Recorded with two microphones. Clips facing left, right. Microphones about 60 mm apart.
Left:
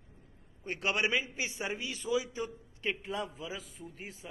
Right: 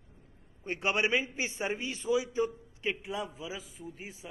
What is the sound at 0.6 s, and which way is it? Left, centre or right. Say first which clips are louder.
A man's voice: right 2 dB; right.